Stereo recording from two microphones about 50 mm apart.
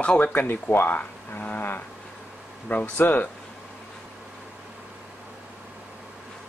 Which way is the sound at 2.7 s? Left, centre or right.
Left.